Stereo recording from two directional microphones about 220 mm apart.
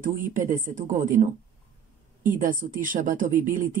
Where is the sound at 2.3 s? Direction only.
35° right (ahead or behind).